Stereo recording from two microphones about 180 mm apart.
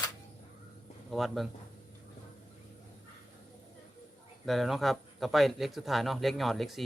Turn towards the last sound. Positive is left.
turn(degrees=0)  # may be behind; listen again after turning